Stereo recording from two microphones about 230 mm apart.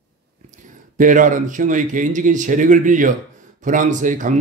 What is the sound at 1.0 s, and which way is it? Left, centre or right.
Speech, right.